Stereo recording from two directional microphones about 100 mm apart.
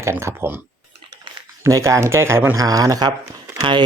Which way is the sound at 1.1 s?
45° right (ahead or behind).